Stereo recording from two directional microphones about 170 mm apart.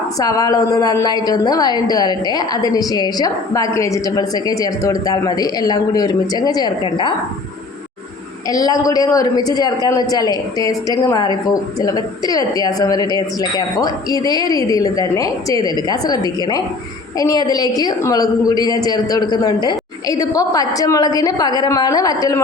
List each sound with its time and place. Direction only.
0.2 s a woman's voice: 20° left (ahead or behind)
8.4 s a woman's voice: 20° left (ahead or behind)